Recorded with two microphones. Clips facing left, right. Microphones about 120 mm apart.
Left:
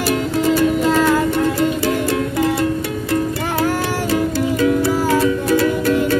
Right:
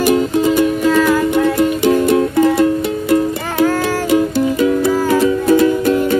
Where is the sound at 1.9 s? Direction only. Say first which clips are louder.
Right 6 dB; 25° right (ahead or behind).